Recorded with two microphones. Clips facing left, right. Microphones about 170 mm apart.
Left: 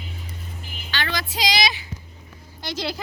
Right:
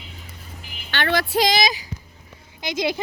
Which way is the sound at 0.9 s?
60° right (ahead or behind).